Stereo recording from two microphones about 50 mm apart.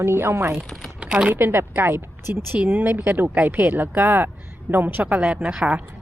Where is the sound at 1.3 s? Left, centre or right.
Right.